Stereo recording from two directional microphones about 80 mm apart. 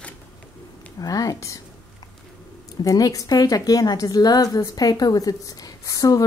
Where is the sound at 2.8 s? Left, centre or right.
Left.